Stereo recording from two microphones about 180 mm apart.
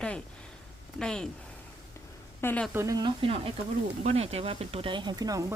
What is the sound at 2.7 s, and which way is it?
Speech, 15° right (ahead or behind).